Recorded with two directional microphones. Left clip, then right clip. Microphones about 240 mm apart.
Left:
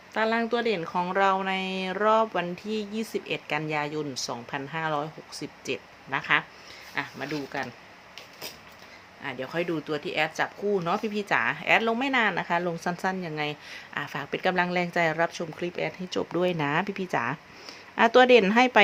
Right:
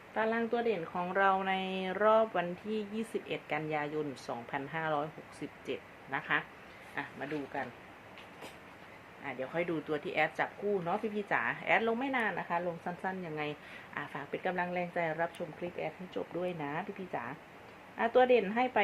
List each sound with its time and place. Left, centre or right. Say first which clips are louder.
0.1 s speech: left 7 dB; left
9.2 s speech: left 5 dB; left